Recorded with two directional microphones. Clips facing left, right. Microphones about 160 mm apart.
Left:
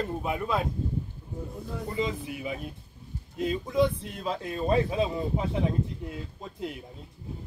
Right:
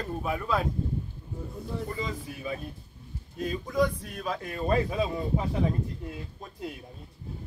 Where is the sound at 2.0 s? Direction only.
20° left (ahead or behind).